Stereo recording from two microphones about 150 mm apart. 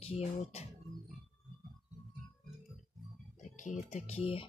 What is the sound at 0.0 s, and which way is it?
Speech, 40° left (ahead or behind).